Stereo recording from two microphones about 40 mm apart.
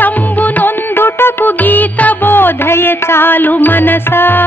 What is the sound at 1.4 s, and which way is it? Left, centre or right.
Music, left.